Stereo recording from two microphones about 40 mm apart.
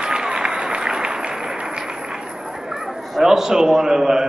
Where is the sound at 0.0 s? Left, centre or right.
Right.